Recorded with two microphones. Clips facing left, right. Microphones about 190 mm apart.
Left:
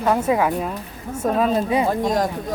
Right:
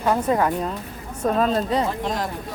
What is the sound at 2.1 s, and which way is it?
Speech, 45° left (ahead or behind).